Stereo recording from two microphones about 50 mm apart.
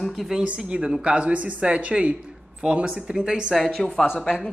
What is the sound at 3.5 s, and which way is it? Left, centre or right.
Speech, centre.